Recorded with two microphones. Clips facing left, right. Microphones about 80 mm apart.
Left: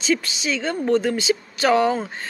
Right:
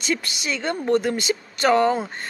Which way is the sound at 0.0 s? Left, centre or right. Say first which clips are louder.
Left 4 dB; right.